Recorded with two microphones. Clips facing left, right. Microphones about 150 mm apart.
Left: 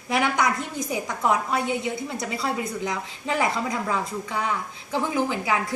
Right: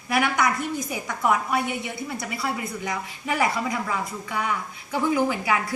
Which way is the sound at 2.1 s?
20° left (ahead or behind).